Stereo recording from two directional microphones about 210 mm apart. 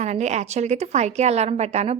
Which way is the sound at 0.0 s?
30° right (ahead or behind).